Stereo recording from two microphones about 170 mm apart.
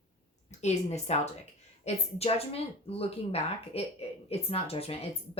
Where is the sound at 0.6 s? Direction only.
40° left (ahead or behind).